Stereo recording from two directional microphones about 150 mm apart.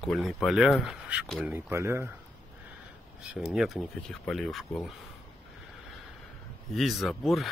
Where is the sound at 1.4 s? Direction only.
20° right (ahead or behind).